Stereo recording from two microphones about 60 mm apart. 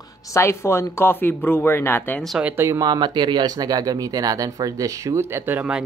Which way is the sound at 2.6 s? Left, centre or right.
Right.